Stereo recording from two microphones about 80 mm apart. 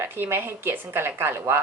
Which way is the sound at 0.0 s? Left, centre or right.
Right.